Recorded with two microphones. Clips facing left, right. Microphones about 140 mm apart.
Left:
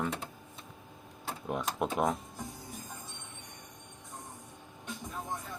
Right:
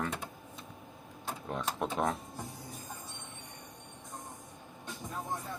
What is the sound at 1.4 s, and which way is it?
Speech, 10° left (ahead or behind).